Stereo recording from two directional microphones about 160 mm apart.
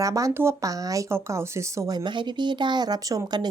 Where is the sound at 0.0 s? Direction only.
20° right (ahead or behind).